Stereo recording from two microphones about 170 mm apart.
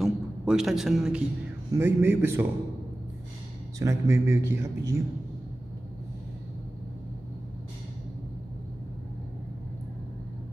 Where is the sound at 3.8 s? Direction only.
20° right (ahead or behind).